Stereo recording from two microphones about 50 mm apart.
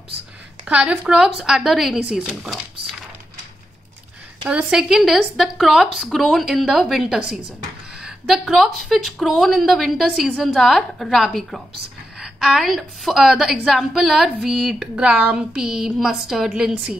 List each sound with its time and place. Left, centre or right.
0.7 s a woman's voice: right; by 2.0 s centre
2.0 s a woman's voice: centre
2.4 s a sound: centre
4.5 s a woman's voice: centre
8.5 s a woman's voice: centre